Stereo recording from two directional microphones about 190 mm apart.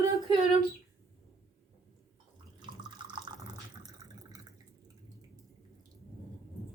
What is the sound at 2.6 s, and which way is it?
Water, 25° right (ahead or behind).